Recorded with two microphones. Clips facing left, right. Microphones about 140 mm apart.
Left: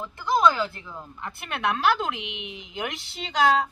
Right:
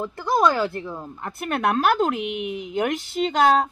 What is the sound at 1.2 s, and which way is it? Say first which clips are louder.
Speech: right 5 dB; 45° right (ahead or behind).